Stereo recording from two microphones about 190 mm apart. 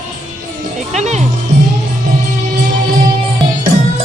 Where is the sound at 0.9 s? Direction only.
40° right (ahead or behind).